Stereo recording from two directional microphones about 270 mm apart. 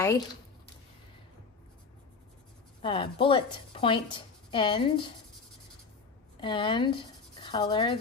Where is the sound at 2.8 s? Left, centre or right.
Centre.